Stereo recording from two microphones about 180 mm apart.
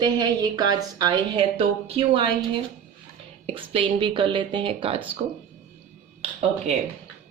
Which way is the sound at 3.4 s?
30° right (ahead or behind).